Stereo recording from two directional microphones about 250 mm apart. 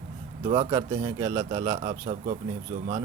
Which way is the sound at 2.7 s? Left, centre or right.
Right.